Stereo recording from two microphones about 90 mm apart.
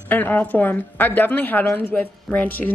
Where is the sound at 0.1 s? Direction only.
20° left (ahead or behind).